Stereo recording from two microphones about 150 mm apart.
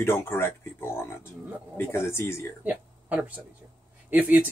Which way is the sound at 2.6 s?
10° right (ahead or behind).